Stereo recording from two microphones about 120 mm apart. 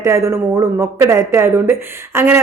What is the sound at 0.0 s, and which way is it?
Speech, 25° right (ahead or behind).